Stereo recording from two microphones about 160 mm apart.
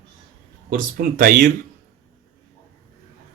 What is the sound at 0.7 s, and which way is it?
Speech, 65° right (ahead or behind).